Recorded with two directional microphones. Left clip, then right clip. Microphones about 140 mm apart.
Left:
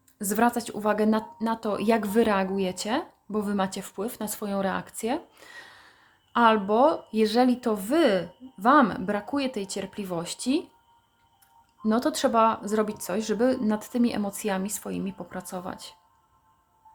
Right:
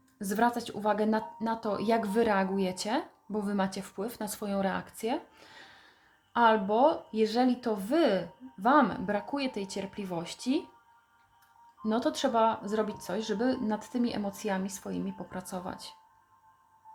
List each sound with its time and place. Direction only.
0.2 s speech: 45° left (ahead or behind)
11.8 s speech: 40° left (ahead or behind)